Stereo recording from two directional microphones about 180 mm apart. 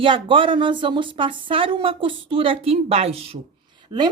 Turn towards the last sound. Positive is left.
turn(degrees=-25)  # may be behind; listen again after turning